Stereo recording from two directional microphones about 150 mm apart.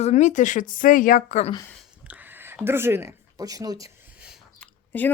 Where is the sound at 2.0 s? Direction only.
10° right (ahead or behind).